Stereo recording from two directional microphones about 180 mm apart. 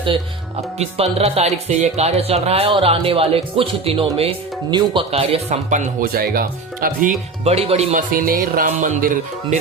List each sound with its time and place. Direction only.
0.8 s speech: 35° right (ahead or behind); by 7.1 s 55° right (ahead or behind)
7.4 s speech: 35° right (ahead or behind)
7.9 s speech: 50° right (ahead or behind)